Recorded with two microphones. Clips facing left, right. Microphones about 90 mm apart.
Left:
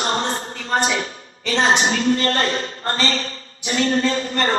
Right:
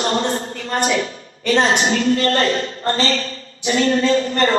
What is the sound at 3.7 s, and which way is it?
Speech, 50° right (ahead or behind).